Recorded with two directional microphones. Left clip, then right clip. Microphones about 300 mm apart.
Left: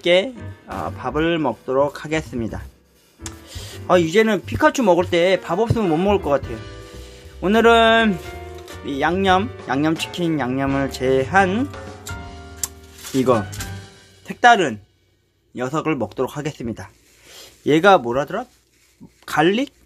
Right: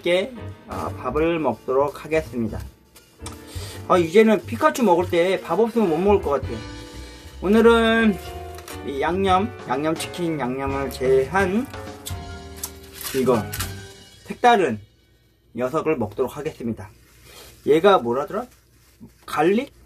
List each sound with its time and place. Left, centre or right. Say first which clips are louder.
0.0 s speech: left 5 dB; left
3.8 s speech: even; left
7.4 s speech: left 3 dB; left
11.7 s music: even; centre
14.2 s speech: left 3 dB; left